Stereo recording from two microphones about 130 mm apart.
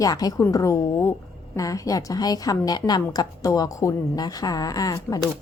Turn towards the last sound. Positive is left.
turn(degrees=30)  # may be behind; listen again after turning